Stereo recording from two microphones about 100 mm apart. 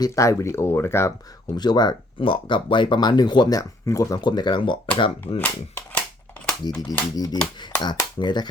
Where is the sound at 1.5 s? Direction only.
45° left (ahead or behind).